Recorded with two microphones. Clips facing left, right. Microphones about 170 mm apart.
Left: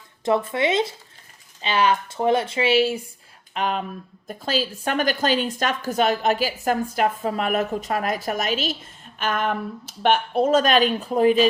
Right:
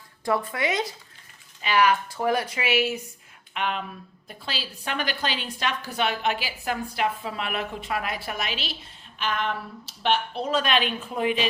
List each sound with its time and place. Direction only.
0.3 s speech: 25° left (ahead or behind)
3.5 s a woman's voice: 40° left (ahead or behind)